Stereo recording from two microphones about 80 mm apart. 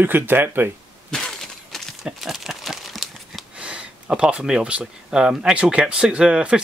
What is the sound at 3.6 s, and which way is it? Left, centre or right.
Speech, centre.